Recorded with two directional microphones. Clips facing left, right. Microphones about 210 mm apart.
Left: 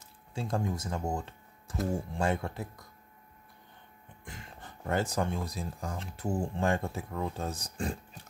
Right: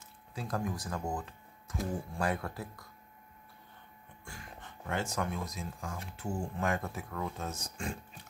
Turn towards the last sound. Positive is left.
turn(degrees=35)  # may be behind; listen again after turning